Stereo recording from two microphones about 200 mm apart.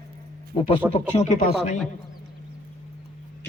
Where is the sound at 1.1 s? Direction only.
35° left (ahead or behind).